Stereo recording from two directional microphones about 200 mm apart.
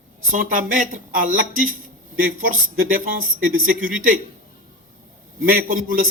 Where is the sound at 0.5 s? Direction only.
45° right (ahead or behind).